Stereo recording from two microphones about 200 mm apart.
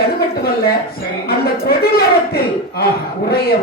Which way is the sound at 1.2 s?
50° left (ahead or behind).